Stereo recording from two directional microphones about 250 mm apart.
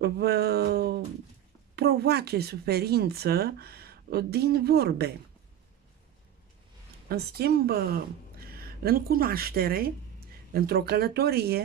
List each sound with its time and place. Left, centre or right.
0.0 s speech: right
7.1 s speech: right